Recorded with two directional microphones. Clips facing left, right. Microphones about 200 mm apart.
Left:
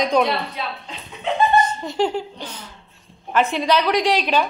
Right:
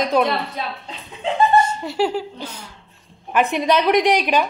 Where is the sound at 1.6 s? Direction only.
10° right (ahead or behind).